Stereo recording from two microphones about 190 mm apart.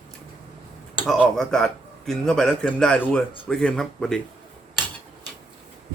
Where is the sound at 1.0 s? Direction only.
Centre (ahead or behind).